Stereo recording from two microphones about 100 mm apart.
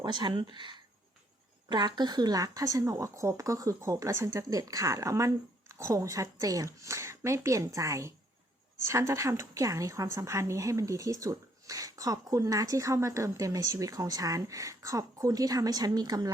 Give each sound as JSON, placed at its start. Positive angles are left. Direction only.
{"t": 0.0, "sound": "a woman's voice", "side_deg": -50}